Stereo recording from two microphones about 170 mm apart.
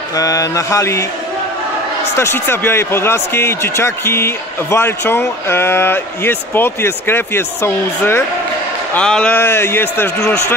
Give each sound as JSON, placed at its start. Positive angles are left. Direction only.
{"t": 0.1, "sound": "speech", "side_deg": 20}
{"t": 2.1, "sound": "speech", "side_deg": 15}